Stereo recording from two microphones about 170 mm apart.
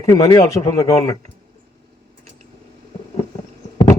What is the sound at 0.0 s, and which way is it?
Speech, 20° left (ahead or behind).